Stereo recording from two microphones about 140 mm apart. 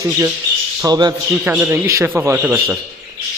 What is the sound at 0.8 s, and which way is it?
Speech, 30° right (ahead or behind).